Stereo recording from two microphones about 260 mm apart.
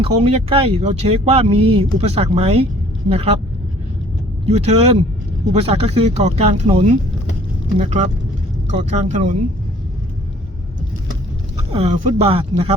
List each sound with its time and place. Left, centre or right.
0.0 s speech: right
4.4 s speech: right
11.7 s speech: right